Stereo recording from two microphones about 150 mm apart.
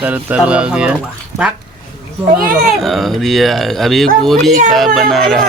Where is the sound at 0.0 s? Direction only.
10° right (ahead or behind).